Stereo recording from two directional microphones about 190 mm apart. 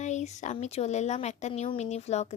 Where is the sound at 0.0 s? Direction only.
35° left (ahead or behind).